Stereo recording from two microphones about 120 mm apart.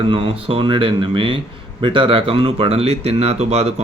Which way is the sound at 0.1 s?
50° right (ahead or behind).